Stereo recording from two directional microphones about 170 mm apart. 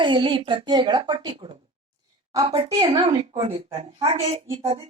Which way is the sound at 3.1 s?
40° right (ahead or behind).